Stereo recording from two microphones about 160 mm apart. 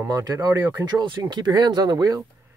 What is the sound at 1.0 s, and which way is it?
Speech, 30° right (ahead or behind).